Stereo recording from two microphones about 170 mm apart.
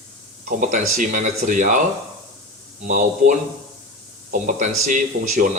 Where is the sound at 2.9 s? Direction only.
50° right (ahead or behind).